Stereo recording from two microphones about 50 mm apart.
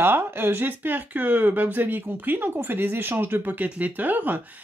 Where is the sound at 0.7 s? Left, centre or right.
Right.